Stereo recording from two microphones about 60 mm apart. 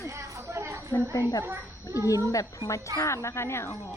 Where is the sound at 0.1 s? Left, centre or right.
Right.